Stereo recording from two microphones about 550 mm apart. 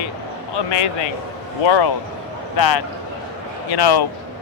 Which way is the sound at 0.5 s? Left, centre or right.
Left.